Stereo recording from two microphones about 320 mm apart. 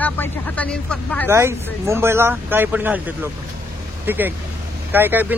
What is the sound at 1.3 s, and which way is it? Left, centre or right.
A man's voice, centre.